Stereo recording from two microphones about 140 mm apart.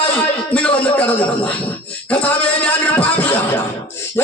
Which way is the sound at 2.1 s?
10° left (ahead or behind).